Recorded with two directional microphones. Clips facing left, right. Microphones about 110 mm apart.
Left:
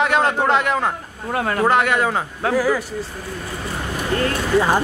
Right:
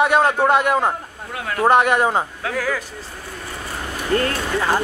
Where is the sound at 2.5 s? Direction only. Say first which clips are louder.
Left 5 dB; 15° left (ahead or behind).